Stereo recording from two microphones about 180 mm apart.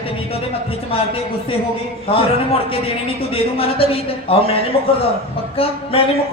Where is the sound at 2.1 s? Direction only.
30° left (ahead or behind).